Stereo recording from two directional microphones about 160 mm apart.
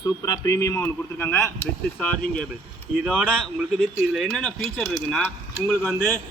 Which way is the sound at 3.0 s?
5° right (ahead or behind).